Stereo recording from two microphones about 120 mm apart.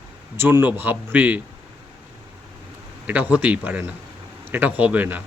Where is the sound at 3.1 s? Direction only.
10° right (ahead or behind).